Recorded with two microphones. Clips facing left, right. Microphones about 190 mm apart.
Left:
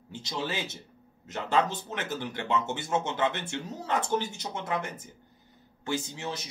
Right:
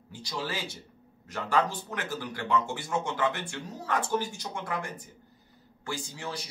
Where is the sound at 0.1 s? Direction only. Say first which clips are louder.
Left 1 dB; 25° left (ahead or behind).